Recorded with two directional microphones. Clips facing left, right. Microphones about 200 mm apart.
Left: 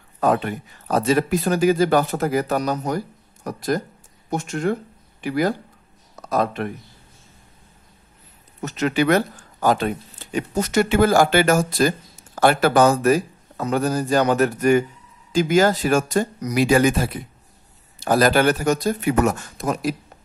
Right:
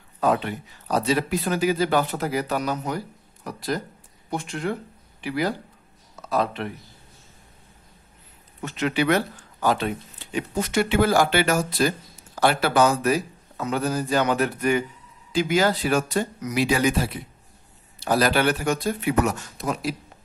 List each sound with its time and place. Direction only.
0.2 s speech: 50° left (ahead or behind)
8.5 s speech: 45° left (ahead or behind)